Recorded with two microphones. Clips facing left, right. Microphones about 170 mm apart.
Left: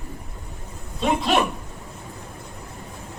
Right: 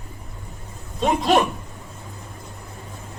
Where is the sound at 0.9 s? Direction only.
45° right (ahead or behind).